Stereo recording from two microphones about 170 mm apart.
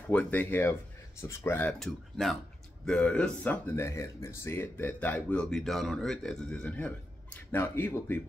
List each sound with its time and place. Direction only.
0.1 s speech: 10° left (ahead or behind)